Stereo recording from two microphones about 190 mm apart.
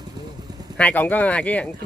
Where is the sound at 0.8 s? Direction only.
10° left (ahead or behind).